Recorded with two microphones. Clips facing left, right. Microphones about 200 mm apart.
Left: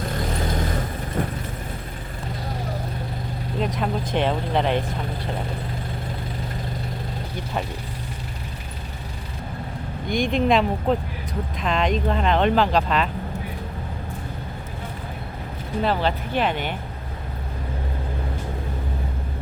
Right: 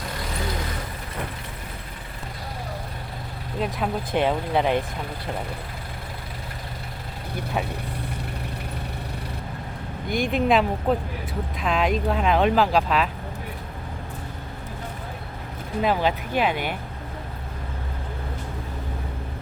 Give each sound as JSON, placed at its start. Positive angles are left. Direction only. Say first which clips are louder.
{"t": 0.2, "sound": "vehicle", "louder": "left 3 dB", "side_deg": 45}
{"t": 3.6, "sound": "speech", "louder": "left 1 dB", "side_deg": -5}
{"t": 10.1, "sound": "speech", "louder": "left 1 dB", "side_deg": -5}
{"t": 15.8, "sound": "speech", "louder": "even", "side_deg": -10}